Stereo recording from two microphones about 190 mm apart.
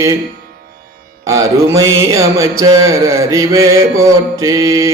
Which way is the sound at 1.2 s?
15° right (ahead or behind).